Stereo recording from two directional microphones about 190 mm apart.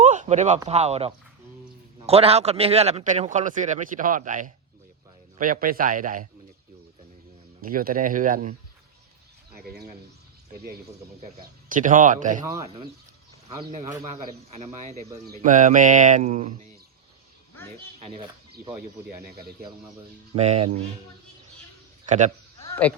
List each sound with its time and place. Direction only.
0.0 s a man's voice: 40° right (ahead or behind)
7.6 s a man's voice: 50° right (ahead or behind)
9.6 s a man's voice: 50° right (ahead or behind)
11.7 s a man's voice: 45° right (ahead or behind)
14.5 s speech: 35° right (ahead or behind)
20.3 s speech: 35° right (ahead or behind)
22.0 s a man's voice: 40° right (ahead or behind)
22.7 s speech: 10° left (ahead or behind)